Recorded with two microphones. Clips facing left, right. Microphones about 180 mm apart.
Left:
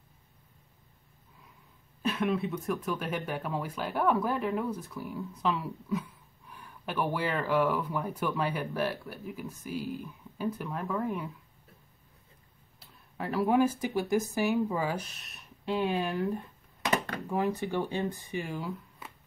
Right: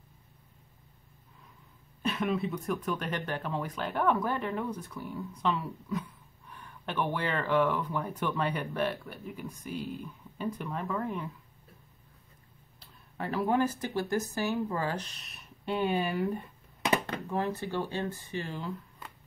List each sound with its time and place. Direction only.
2.0 s speech: centre (ahead or behind)
13.2 s speech: centre (ahead or behind)
17.3 s speech: 15° left (ahead or behind)
18.6 s a sound: centre (ahead or behind)